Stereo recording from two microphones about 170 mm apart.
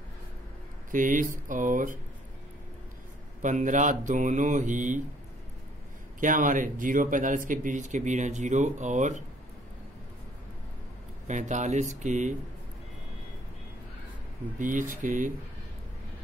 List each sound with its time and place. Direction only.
0.9 s speech: 50° right (ahead or behind)
3.4 s speech: 45° right (ahead or behind)
6.1 s speech: 50° right (ahead or behind)
11.2 s speech: 45° right (ahead or behind)
14.6 s speech: 50° right (ahead or behind)